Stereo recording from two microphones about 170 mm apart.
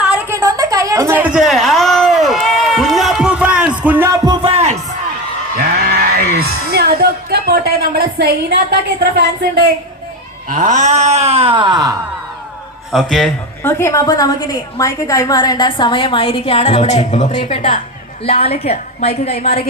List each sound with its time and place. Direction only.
0.0 s a sound: 10° right (ahead or behind)
4.4 s music: 40° right (ahead or behind)
5.5 s music: 60° right (ahead or behind)
10.5 s speech: 45° right (ahead or behind); by 11.9 s 25° right (ahead or behind)
12.9 s a man's voice: centre (ahead or behind)
13.7 s a woman's voice: 15° left (ahead or behind); by 19.5 s 40° left (ahead or behind)